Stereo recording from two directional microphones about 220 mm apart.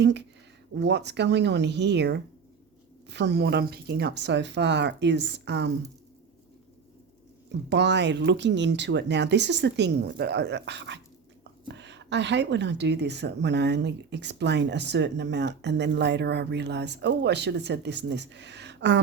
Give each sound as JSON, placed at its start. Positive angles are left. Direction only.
{"t": 0.0, "sound": "speech", "side_deg": -50}
{"t": 7.7, "sound": "speech", "side_deg": -50}